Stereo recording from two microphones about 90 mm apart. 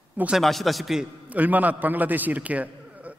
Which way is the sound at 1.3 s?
20° right (ahead or behind).